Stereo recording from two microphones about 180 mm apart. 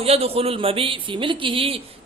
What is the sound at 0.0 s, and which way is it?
Speech, 35° right (ahead or behind).